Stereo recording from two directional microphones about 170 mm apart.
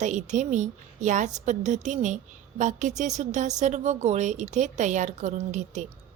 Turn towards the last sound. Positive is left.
turn(degrees=-45)  # may be behind; listen again after turning